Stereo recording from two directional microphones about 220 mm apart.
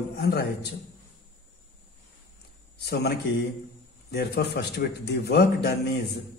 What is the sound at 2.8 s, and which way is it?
A man's voice, 50° left (ahead or behind).